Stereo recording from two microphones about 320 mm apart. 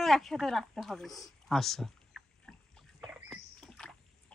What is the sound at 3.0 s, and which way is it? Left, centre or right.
Rodents, centre.